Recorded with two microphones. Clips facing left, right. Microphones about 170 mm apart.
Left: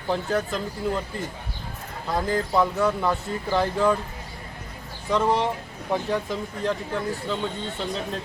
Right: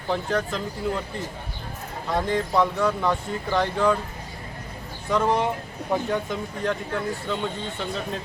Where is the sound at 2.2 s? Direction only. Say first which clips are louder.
Even; 5° left (ahead or behind).